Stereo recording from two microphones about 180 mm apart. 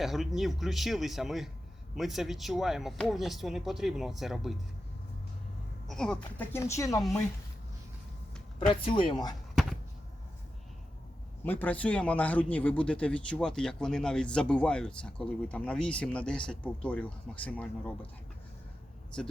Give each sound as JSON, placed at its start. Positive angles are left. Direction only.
{"t": 0.0, "sound": "speech", "side_deg": 0}
{"t": 5.9, "sound": "a man's voice", "side_deg": 5}
{"t": 8.7, "sound": "speech", "side_deg": 25}
{"t": 11.4, "sound": "a man's voice", "side_deg": 10}